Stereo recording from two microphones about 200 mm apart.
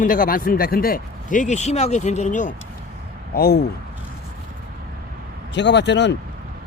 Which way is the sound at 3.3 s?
50° left (ahead or behind).